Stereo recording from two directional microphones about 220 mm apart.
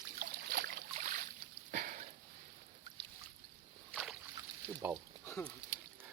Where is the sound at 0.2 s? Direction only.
40° right (ahead or behind).